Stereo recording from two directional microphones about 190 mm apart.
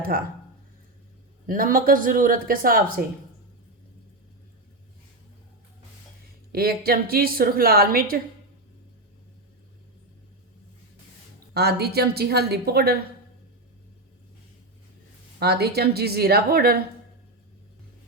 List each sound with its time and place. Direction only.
0.1 s a woman's voice: 50° right (ahead or behind)
1.5 s a woman's voice: 45° right (ahead or behind)
6.5 s a woman's voice: 55° right (ahead or behind)
11.5 s a woman's voice: 55° right (ahead or behind)
15.4 s a woman's voice: 55° right (ahead or behind)